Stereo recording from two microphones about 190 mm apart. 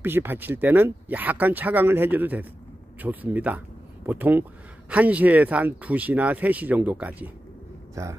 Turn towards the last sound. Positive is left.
turn(degrees=-10)  # may be behind; listen again after turning